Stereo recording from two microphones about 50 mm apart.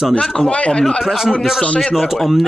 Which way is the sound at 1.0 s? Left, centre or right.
Centre.